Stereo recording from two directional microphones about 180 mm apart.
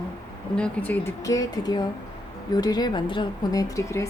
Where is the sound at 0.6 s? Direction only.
5° left (ahead or behind).